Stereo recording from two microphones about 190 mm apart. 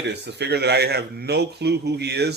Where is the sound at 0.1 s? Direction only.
65° right (ahead or behind).